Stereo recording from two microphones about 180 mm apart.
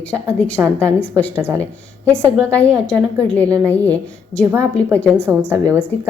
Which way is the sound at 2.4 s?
10° left (ahead or behind).